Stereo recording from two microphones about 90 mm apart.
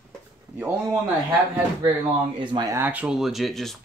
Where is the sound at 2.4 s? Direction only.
60° right (ahead or behind).